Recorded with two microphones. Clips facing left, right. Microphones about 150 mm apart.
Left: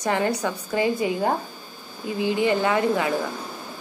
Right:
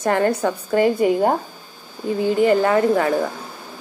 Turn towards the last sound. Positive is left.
turn(degrees=-40)  # may be behind; listen again after turning